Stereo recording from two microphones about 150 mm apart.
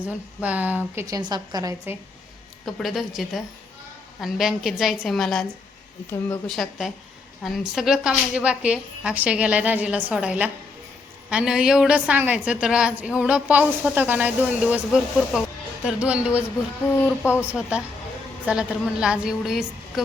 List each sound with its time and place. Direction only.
0.3 s a woman's voice: 10° right (ahead or behind)
1.0 s a woman's voice: 25° right (ahead or behind)
2.6 s a woman's voice: centre (ahead or behind)
6.1 s speech: 15° left (ahead or behind)
6.5 s a woman's voice: centre (ahead or behind)
17.5 s a woman's voice: 5° right (ahead or behind)